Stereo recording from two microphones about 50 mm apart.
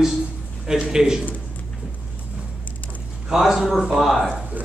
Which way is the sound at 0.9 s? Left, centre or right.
Centre.